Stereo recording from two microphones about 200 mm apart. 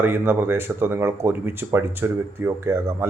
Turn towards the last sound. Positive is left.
turn(degrees=-10)  # may be behind; listen again after turning